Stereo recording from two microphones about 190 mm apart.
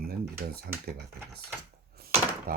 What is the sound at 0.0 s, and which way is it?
Typing, 55° right (ahead or behind).